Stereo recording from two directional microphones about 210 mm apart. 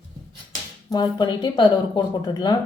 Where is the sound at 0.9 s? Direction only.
20° left (ahead or behind).